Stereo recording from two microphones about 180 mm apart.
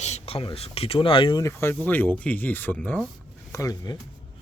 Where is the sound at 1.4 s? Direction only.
15° left (ahead or behind).